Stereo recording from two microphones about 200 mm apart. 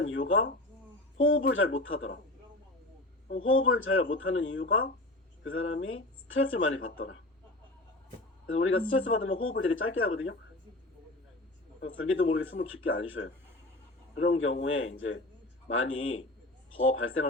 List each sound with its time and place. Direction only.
0.0 s a man's voice: 85° left
1.5 s speech: 90° left
3.3 s speech: 90° left
5.4 s speech: 90° left
8.4 s a man's voice: 90° left
11.8 s a man's voice: 85° left
14.3 s a man's voice: 85° left